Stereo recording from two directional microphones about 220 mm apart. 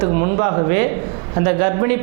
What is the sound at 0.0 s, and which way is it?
A man's voice, 25° right (ahead or behind).